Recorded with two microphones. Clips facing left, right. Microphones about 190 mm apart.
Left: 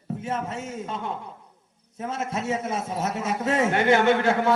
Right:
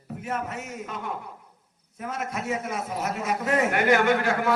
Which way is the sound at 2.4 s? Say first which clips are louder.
Left 3 dB; 25° left (ahead or behind).